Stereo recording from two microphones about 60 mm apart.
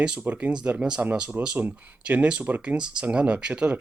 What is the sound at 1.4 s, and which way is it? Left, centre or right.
Speech, right.